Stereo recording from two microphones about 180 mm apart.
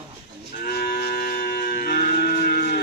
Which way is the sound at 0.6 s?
55° left (ahead or behind).